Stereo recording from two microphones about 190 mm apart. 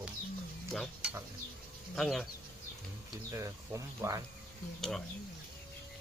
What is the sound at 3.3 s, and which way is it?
Speech, 15° right (ahead or behind).